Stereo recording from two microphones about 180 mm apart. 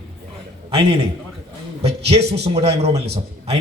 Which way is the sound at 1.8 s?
35° right (ahead or behind).